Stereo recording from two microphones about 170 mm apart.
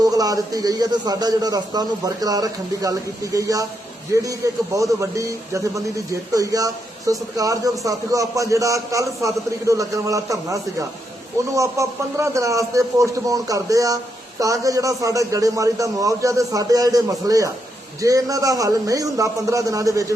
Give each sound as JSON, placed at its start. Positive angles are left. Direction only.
{"t": 0.0, "sound": "a man's voice", "side_deg": -20}